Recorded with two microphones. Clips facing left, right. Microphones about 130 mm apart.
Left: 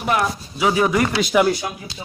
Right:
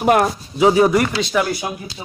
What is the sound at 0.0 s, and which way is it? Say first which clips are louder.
Speech: right 6 dB; 50° right (ahead or behind).